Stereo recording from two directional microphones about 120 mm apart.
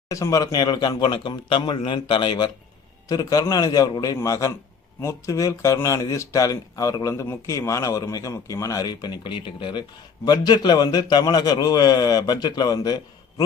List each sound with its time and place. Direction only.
0.1 s a man's voice: 30° left (ahead or behind)